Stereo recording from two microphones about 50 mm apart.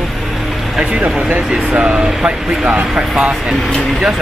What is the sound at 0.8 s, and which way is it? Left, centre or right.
Speech, centre.